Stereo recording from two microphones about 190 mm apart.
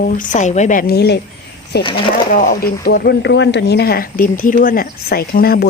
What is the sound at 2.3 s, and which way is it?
Speech, 45° left (ahead or behind).